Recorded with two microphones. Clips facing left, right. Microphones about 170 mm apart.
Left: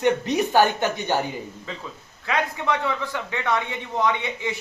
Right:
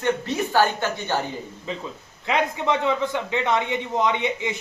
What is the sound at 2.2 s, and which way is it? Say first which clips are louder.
A man's voice: right 2 dB; 20° right (ahead or behind).